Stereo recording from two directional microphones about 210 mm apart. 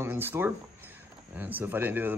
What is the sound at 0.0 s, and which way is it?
Speech, 10° right (ahead or behind).